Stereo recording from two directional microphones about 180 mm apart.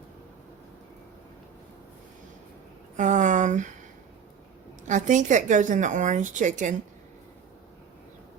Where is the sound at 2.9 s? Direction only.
45° right (ahead or behind).